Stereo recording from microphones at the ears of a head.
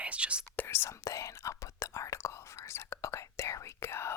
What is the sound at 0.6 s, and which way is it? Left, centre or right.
Whispering, left.